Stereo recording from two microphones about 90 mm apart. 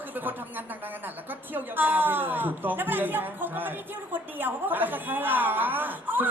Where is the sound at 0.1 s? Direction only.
20° right (ahead or behind).